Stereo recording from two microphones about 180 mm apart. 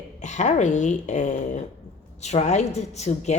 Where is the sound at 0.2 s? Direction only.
40° left (ahead or behind).